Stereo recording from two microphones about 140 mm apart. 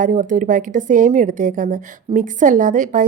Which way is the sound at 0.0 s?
70° right (ahead or behind).